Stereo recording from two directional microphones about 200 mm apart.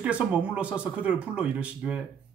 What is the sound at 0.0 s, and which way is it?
Speech, 5° right (ahead or behind).